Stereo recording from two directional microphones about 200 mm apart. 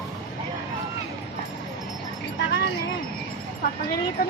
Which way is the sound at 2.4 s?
65° left (ahead or behind).